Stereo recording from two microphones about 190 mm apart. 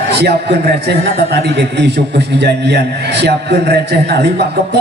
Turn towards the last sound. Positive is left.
turn(degrees=-60)  # may be behind; listen again after turning